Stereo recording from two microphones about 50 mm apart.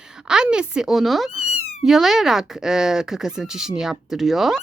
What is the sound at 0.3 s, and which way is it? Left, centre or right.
Speech, centre.